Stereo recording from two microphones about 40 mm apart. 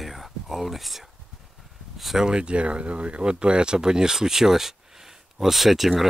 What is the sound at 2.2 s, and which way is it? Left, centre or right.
Speech, right.